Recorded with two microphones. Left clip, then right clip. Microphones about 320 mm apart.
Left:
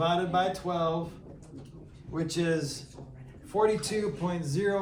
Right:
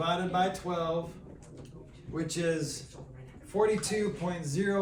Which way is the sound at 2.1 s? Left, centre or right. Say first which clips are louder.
Left 2 dB; centre.